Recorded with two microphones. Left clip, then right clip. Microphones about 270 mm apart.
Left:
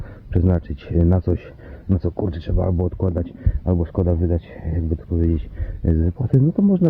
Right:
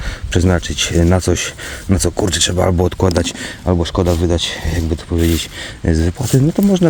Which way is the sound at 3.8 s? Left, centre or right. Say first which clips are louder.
Right 7 dB; centre.